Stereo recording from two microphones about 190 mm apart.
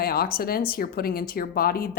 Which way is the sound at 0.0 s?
55° left (ahead or behind).